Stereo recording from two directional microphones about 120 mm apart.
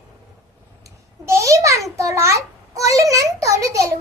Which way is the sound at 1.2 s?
25° right (ahead or behind).